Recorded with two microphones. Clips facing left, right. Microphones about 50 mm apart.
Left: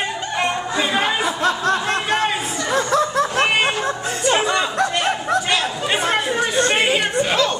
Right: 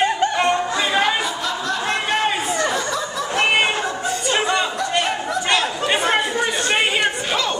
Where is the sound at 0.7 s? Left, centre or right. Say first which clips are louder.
Even; centre.